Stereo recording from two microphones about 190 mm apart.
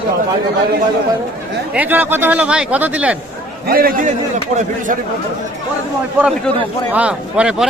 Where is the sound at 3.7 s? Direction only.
50° right (ahead or behind).